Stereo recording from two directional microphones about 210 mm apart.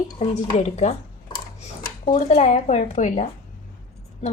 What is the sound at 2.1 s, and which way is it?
Speech, 35° left (ahead or behind).